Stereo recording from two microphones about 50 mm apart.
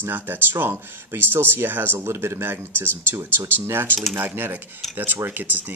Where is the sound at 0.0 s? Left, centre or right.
Right.